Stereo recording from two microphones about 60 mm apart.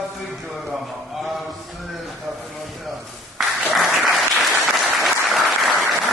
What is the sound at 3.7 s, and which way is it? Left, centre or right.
Applause, centre.